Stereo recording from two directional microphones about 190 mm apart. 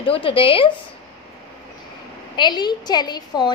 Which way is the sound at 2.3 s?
25° left (ahead or behind).